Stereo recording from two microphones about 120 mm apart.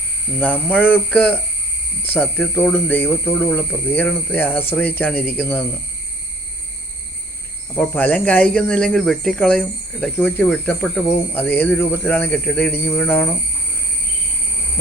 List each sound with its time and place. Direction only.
0.3 s speech: 15° left (ahead or behind)
7.9 s speech: 15° left (ahead or behind)